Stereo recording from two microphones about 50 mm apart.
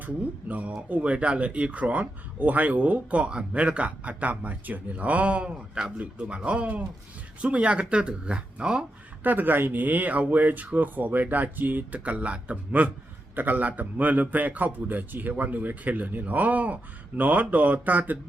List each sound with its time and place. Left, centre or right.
0.0 s a man's voice: right
9.2 s a man's voice: right
13.3 s a man's voice: right